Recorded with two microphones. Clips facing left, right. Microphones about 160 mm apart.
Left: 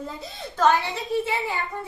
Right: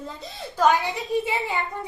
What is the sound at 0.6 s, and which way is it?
Speech, 15° right (ahead or behind).